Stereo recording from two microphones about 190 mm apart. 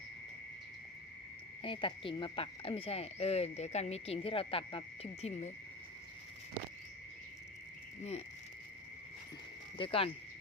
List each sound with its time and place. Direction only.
1.6 s speech: 25° left (ahead or behind)
9.7 s speech: 30° left (ahead or behind)